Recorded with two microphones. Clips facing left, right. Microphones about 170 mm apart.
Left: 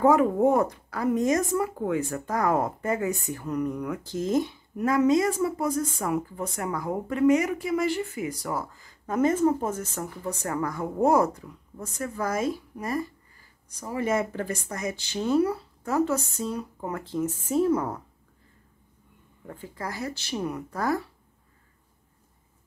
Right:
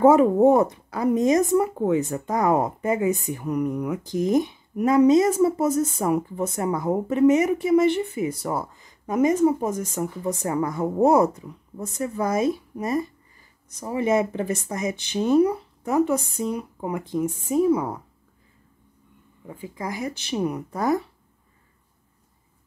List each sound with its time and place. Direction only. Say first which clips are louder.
0.0 s speech: right 5 dB; 25° right (ahead or behind)
19.4 s speech: right 3 dB; 10° right (ahead or behind)